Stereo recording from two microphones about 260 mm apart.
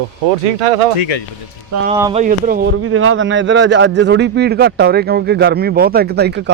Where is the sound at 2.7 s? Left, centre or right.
Right.